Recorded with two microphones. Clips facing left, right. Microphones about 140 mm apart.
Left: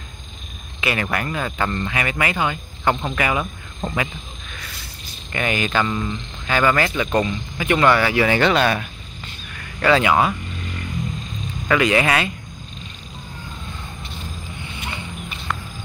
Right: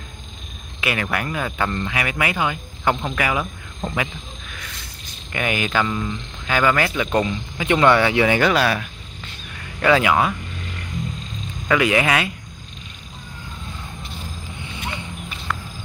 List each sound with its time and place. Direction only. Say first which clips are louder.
0.7 s speech: left 1 dB; 5° right (ahead or behind)
5.3 s speech: left 1 dB; 10° right (ahead or behind)
8.4 s speech: left 1 dB; 5° right (ahead or behind)
11.6 s speech: even; 10° right (ahead or behind)
15.5 s a sound: even; 5° left (ahead or behind)